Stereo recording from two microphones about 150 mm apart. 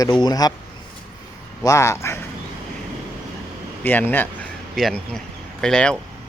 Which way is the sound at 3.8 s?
15° left (ahead or behind).